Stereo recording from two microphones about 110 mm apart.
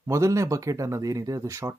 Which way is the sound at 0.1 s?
30° right (ahead or behind).